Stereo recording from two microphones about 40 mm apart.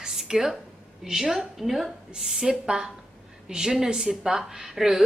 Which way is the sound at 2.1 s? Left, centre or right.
Centre.